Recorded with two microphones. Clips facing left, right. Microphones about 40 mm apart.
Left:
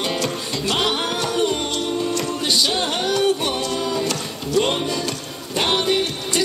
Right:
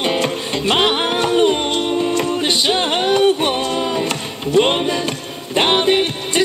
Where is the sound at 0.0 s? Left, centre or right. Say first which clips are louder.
Right 5 dB; right.